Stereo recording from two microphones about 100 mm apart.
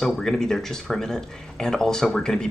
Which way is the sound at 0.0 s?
5° left (ahead or behind).